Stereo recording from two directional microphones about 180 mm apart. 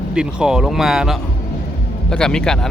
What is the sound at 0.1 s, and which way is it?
Speech, 5° right (ahead or behind).